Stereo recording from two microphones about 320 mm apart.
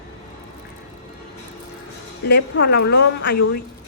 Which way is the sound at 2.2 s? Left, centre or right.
Left.